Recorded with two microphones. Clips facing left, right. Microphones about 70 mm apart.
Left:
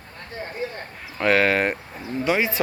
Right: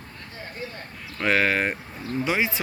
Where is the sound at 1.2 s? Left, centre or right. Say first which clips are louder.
Left 3 dB; centre.